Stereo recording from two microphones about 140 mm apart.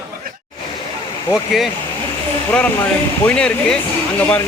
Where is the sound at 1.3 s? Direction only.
Centre (ahead or behind).